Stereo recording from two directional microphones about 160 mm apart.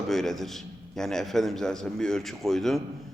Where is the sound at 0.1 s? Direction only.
Centre (ahead or behind).